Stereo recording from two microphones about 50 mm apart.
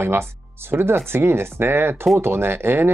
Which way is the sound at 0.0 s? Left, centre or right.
Right.